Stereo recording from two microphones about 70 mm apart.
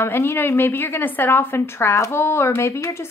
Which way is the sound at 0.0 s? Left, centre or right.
Left.